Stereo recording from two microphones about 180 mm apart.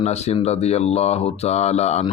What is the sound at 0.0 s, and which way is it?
Speech, 35° left (ahead or behind).